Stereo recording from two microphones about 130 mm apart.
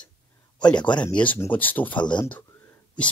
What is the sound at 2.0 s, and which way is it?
Speech, 35° left (ahead or behind).